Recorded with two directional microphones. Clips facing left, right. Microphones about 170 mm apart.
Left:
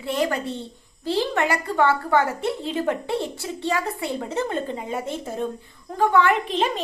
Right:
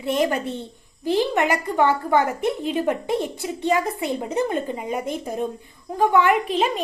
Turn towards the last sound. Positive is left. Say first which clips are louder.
# right 2 dB
turn(degrees=-10)  # may be behind; listen again after turning